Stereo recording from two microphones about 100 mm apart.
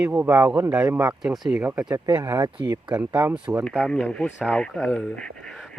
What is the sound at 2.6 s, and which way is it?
Speech, 45° right (ahead or behind).